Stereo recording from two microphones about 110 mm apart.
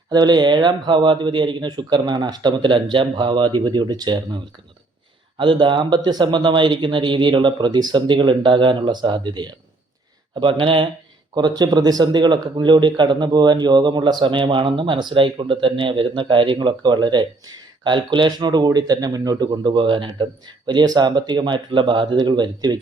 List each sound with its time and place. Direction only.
0.1 s speech: 40° right (ahead or behind)
5.4 s speech: 50° right (ahead or behind)
11.3 s speech: 40° right (ahead or behind)